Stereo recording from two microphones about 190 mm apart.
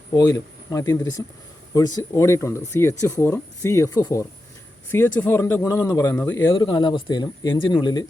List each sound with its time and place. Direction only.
0.1 s speech: 20° left (ahead or behind)